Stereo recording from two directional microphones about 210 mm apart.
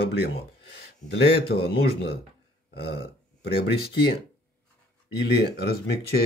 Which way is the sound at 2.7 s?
50° left (ahead or behind).